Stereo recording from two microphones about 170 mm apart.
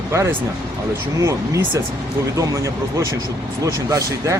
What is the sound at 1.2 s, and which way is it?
Speech, 20° right (ahead or behind).